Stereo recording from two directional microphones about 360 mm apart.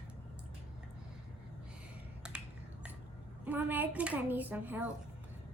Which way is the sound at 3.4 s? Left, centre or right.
Centre.